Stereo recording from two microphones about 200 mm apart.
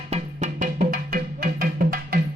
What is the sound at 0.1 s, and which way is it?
Music, 35° right (ahead or behind).